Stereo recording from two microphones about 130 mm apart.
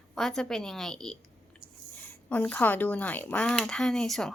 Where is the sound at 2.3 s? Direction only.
10° left (ahead or behind).